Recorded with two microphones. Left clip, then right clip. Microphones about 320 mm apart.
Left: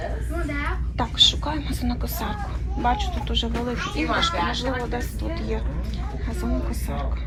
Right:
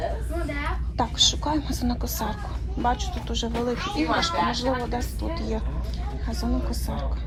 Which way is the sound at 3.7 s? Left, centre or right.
Right.